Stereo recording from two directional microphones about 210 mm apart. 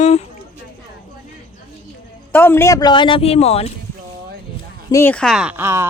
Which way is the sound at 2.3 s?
10° left (ahead or behind).